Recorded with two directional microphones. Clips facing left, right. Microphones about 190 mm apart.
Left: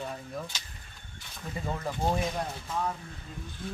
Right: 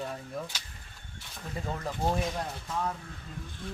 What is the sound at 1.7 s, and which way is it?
Speech, centre (ahead or behind).